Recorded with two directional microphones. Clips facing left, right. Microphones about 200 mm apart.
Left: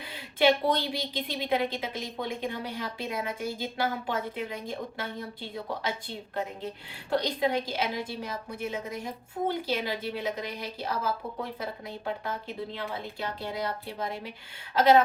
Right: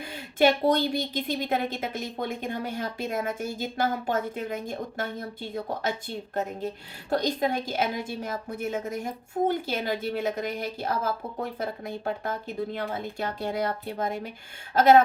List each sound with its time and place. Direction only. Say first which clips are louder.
0.0 s a woman's voice: right 2 dB; 45° right (ahead or behind)
7.1 s a woman's voice: right 1 dB; 45° right (ahead or behind)